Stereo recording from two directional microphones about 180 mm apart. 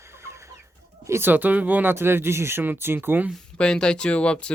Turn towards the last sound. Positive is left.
turn(degrees=5)  # may be behind; listen again after turning